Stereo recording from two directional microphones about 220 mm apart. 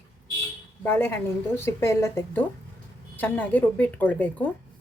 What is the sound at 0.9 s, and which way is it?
A woman's voice, 10° left (ahead or behind).